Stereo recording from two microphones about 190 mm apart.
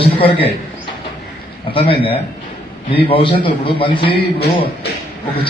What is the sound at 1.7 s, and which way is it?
A man's voice, 30° left (ahead or behind).